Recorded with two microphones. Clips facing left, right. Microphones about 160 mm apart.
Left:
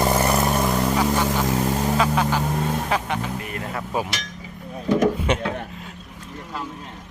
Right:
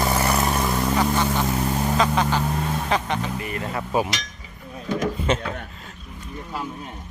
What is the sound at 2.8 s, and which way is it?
Music, 5° left (ahead or behind).